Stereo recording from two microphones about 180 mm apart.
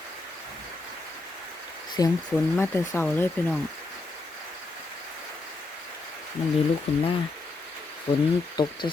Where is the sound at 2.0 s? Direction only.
20° left (ahead or behind).